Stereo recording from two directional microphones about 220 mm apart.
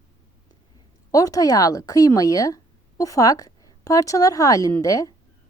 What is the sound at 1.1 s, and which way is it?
Speech, 15° left (ahead or behind).